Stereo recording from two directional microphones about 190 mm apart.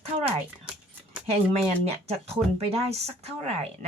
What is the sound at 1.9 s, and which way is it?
Speech, 35° right (ahead or behind).